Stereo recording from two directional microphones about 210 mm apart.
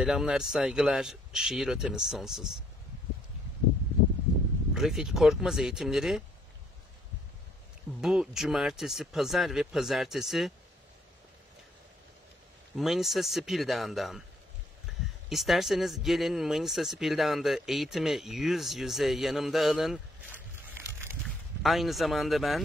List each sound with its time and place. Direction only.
0.0 s speech: centre (ahead or behind)
4.7 s speech: centre (ahead or behind)
8.0 s speech: 5° right (ahead or behind)
12.7 s speech: centre (ahead or behind)
14.9 s a sound: centre (ahead or behind)
15.2 s speech: centre (ahead or behind)
21.6 s speech: centre (ahead or behind)